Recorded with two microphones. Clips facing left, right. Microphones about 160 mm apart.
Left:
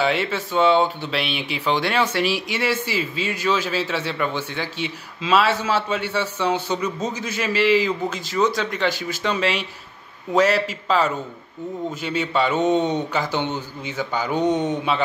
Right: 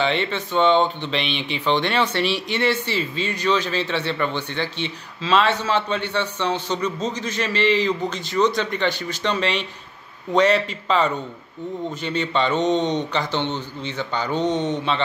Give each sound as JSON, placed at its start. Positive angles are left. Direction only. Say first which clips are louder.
{"t": 0.0, "sound": "a man's voice", "louder": "left 1 dB", "side_deg": 5}